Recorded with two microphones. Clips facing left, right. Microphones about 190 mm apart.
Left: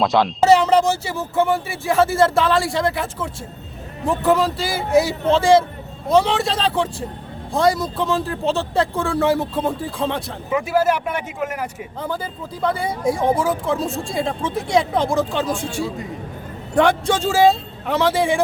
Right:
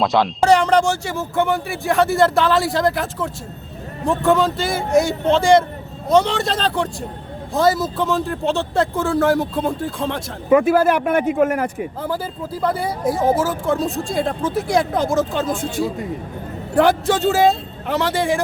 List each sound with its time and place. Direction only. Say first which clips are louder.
0.0 s speech: even; centre (ahead or behind)
10.5 s speech: right 5 dB; 55° right (ahead or behind)
12.0 s speech: left 1 dB; 5° right (ahead or behind)